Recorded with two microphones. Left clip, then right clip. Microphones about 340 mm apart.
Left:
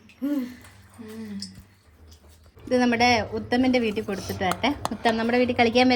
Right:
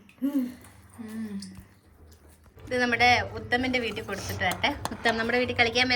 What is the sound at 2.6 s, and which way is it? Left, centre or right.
Speech, centre.